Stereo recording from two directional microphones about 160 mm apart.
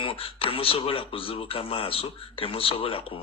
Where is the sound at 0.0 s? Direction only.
35° left (ahead or behind).